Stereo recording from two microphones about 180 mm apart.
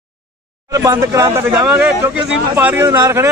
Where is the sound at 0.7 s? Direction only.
15° right (ahead or behind).